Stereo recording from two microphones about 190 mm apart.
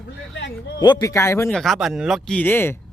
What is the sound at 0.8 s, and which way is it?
Speech, 20° left (ahead or behind).